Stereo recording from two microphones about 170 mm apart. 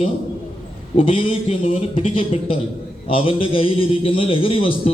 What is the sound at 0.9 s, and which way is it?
A man's voice, 30° left (ahead or behind).